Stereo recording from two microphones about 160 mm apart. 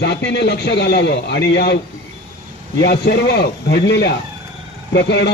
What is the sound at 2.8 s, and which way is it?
A man's voice, 85° left.